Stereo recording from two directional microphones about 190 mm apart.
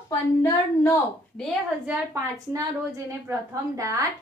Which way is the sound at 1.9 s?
15° right (ahead or behind).